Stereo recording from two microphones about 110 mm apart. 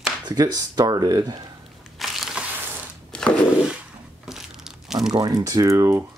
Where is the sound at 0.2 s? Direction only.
35° right (ahead or behind).